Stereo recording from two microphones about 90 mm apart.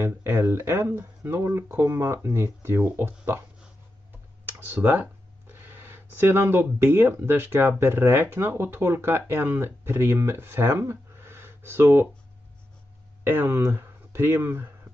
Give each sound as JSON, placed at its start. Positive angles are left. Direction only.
{"t": 0.0, "sound": "speech", "side_deg": -30}
{"t": 4.5, "sound": "speech", "side_deg": -20}
{"t": 13.2, "sound": "speech", "side_deg": -25}